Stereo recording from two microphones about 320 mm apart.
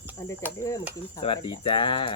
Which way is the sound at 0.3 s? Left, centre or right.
Centre.